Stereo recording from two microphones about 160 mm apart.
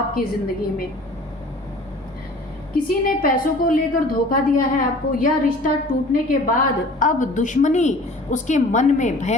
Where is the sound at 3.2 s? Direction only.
60° left (ahead or behind).